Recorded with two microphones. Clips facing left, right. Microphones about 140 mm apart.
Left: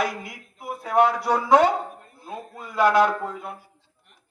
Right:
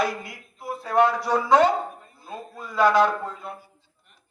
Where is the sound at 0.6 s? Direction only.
15° left (ahead or behind).